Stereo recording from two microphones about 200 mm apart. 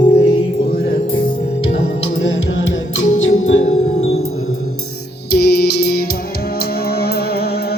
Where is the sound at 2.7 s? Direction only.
70° left (ahead or behind).